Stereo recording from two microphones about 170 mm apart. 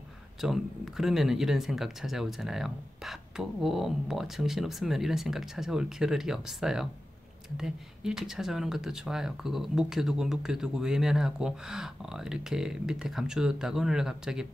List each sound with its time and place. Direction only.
0.4 s speech: centre (ahead or behind)